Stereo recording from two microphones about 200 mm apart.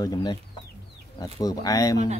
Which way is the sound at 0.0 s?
20° left (ahead or behind).